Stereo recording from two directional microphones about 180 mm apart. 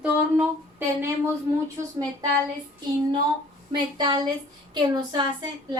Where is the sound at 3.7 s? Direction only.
25° right (ahead or behind).